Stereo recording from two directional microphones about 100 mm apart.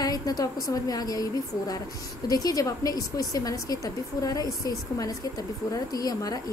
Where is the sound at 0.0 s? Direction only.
40° left (ahead or behind).